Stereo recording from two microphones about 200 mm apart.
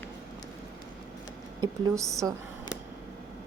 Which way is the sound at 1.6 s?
15° right (ahead or behind).